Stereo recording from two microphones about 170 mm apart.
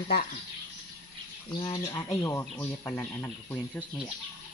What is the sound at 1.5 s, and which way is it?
Speech, 25° left (ahead or behind).